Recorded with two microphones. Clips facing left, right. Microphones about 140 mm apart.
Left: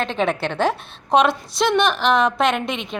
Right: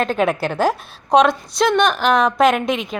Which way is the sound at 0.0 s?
5° right (ahead or behind).